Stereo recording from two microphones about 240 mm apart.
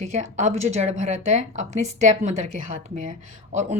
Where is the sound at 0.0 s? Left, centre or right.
Right.